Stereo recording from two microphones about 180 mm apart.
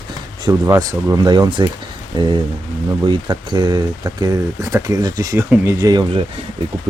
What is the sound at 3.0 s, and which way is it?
Speech, 25° right (ahead or behind).